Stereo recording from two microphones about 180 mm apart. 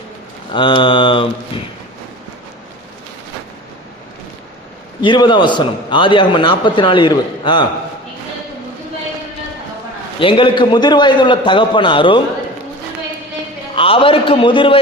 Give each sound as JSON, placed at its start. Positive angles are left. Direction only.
{"t": 0.5, "sound": "a man's voice", "side_deg": 30}
{"t": 4.9, "sound": "a man's voice", "side_deg": 25}
{"t": 10.2, "sound": "a man's voice", "side_deg": 30}
{"t": 13.7, "sound": "a man's voice", "side_deg": 30}